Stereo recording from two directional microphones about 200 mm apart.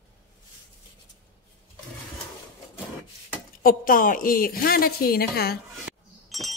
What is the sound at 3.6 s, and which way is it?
A woman's voice, 45° left (ahead or behind).